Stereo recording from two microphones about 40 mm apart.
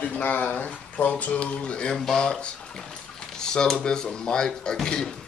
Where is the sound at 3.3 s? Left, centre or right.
Centre.